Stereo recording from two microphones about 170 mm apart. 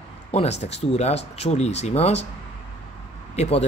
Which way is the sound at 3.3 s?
40° left (ahead or behind).